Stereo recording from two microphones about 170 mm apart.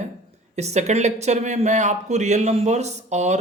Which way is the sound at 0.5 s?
40° right (ahead or behind).